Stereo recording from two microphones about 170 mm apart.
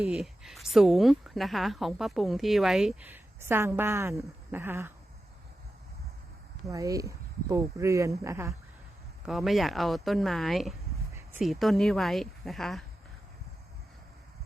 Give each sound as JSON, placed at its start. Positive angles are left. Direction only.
{"t": 0.0, "sound": "a woman's voice", "side_deg": -5}
{"t": 6.7, "sound": "speech", "side_deg": -20}
{"t": 9.2, "sound": "a woman's voice", "side_deg": 0}